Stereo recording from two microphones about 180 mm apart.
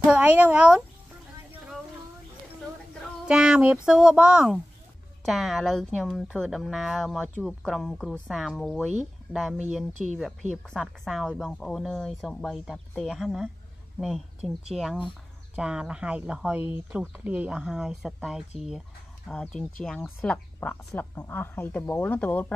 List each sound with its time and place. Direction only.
0.0 s speech: 10° right (ahead or behind)
3.3 s speech: 5° right (ahead or behind)